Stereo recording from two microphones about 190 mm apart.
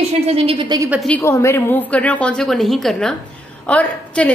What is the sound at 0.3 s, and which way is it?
Speech, 30° right (ahead or behind).